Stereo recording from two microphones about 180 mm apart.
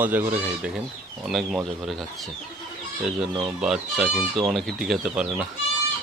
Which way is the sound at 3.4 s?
5° right (ahead or behind).